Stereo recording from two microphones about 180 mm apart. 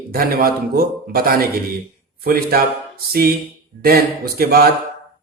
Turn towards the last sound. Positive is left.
turn(degrees=-55)  # may be behind; listen again after turning